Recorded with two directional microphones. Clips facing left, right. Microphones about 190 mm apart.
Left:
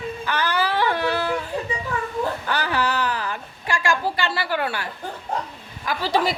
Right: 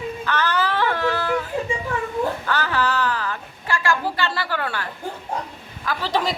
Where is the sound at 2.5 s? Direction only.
15° left (ahead or behind).